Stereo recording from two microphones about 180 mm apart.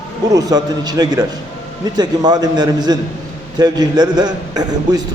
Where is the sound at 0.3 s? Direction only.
20° right (ahead or behind).